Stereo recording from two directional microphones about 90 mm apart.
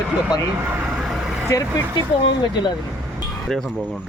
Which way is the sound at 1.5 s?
35° left (ahead or behind).